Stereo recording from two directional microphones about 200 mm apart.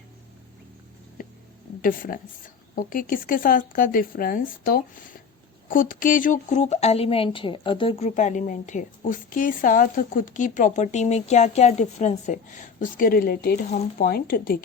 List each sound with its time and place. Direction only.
1.8 s speech: 45° left (ahead or behind)